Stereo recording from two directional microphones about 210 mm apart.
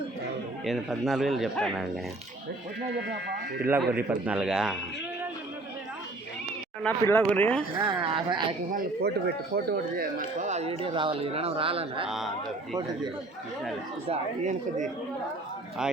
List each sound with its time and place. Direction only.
0.6 s speech: centre (ahead or behind)
3.6 s speech: 10° right (ahead or behind)
6.8 s speech: 10° left (ahead or behind)
8.1 s speech: 20° right (ahead or behind)
8.7 s speech: 50° right (ahead or behind)
10.4 s speech: 30° right (ahead or behind)
12.0 s speech: centre (ahead or behind)
14.1 s speech: 35° right (ahead or behind)